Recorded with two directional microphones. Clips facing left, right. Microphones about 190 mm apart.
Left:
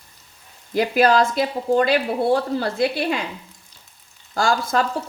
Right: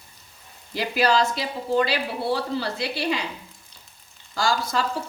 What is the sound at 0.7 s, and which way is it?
Speech, 50° left (ahead or behind).